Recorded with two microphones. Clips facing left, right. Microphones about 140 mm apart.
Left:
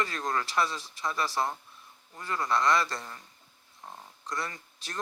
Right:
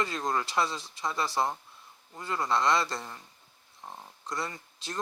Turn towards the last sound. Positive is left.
turn(degrees=-20)  # may be behind; listen again after turning